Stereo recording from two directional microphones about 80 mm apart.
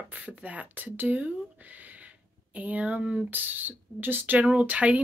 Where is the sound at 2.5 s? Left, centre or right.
Centre.